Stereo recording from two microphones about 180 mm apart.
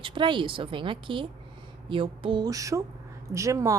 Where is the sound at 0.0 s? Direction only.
25° right (ahead or behind).